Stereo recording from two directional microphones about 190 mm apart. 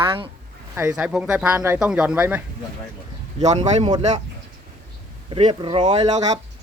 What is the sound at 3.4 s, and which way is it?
Speech, 35° right (ahead or behind).